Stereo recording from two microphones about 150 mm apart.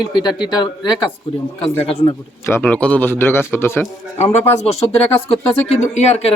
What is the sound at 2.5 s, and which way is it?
A man's voice, 10° left (ahead or behind).